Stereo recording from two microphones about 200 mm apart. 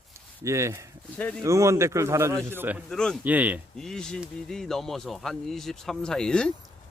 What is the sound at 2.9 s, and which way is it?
Speech, 5° left (ahead or behind).